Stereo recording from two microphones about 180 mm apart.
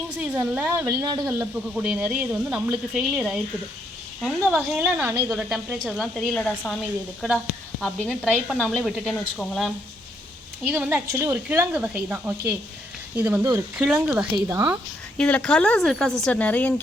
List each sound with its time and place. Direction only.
0.2 s speech: 5° right (ahead or behind)
0.9 s speech: 20° right (ahead or behind)
1.3 s speech: 5° right (ahead or behind)
7.8 s speech: 5° left (ahead or behind)
10.6 s speech: 10° right (ahead or behind)
14.4 s speech: 15° right (ahead or behind)
15.2 s speech: 5° left (ahead or behind)